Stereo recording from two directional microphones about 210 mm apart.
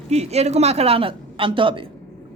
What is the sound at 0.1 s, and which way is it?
A man's voice, 30° right (ahead or behind).